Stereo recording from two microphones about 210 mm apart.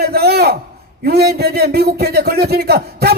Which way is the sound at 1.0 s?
50° right (ahead or behind).